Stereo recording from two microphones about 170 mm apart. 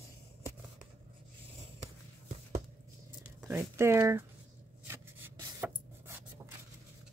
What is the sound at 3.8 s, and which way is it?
Speech, 15° right (ahead or behind).